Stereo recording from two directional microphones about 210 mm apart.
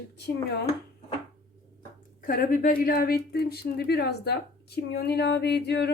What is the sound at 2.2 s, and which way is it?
Speech, 40° left (ahead or behind).